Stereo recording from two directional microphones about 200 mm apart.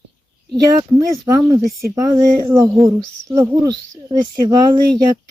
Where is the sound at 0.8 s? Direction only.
15° right (ahead or behind).